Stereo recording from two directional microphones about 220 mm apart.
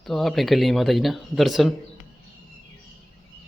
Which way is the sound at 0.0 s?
Centre (ahead or behind).